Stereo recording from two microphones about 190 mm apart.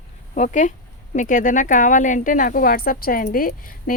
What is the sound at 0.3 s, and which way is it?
Speech, 40° left (ahead or behind).